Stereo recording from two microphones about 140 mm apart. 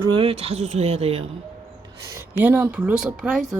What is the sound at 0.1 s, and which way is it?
Speech, 40° right (ahead or behind).